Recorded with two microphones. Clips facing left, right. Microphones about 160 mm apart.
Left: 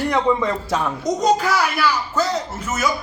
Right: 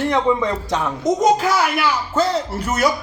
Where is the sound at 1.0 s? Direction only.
20° right (ahead or behind).